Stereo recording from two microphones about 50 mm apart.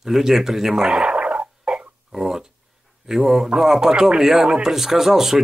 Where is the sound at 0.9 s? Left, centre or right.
Right.